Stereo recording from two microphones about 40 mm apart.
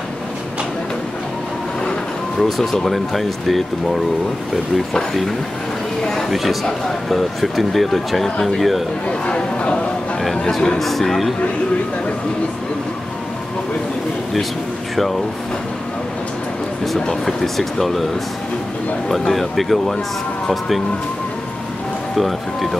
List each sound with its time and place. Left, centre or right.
2.4 s speech: centre
6.2 s speech: centre
9.0 s a man's voice: left
10.5 s speech: centre
17.0 s speech: centre
19.0 s speech: centre
22.1 s speech: centre